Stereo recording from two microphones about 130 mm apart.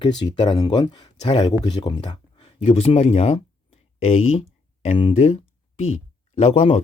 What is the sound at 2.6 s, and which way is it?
Speech, 50° left (ahead or behind).